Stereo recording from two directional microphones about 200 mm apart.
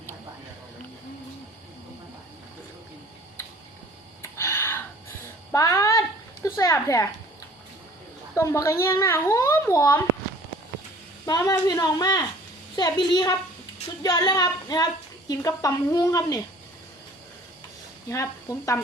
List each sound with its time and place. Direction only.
4.2 s a sound: 15° left (ahead or behind)
8.4 s a woman's voice: 15° left (ahead or behind)
11.3 s a woman's voice: 20° left (ahead or behind)
18.1 s a woman's voice: 15° left (ahead or behind)